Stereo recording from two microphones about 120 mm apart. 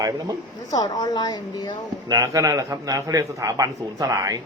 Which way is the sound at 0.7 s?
35° left (ahead or behind).